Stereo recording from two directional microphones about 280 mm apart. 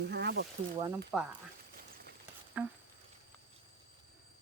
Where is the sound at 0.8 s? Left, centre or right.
Centre.